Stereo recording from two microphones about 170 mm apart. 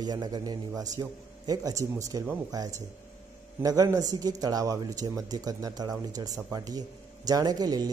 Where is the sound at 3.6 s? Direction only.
20° right (ahead or behind).